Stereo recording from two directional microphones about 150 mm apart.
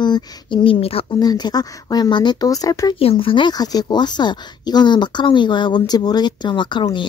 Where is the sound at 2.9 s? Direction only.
40° left (ahead or behind).